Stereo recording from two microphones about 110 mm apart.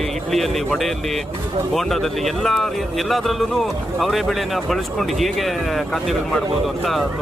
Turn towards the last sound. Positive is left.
turn(degrees=0)  # may be behind; listen again after turning